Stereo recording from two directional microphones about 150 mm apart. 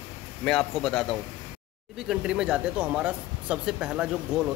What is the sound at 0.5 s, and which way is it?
A man's voice, 5° left (ahead or behind).